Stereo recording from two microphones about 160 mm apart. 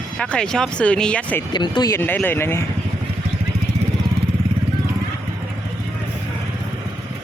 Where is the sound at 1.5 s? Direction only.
30° left (ahead or behind).